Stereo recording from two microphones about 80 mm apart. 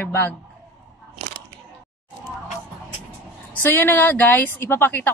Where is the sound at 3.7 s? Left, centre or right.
Left.